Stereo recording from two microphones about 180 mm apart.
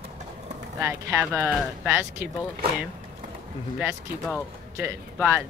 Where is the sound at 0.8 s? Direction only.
15° right (ahead or behind).